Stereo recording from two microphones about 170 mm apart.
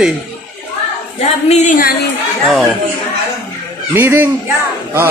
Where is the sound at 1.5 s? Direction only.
45° left (ahead or behind).